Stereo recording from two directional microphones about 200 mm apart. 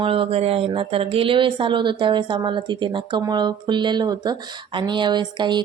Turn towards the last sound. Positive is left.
turn(degrees=-20)  # may be behind; listen again after turning